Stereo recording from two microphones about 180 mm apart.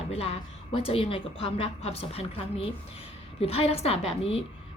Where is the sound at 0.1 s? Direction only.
30° left (ahead or behind).